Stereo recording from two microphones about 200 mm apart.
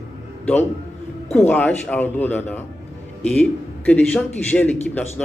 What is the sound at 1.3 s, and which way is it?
A man's voice, 5° left (ahead or behind).